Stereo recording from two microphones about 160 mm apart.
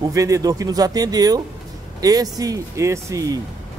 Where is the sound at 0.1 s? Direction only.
20° right (ahead or behind).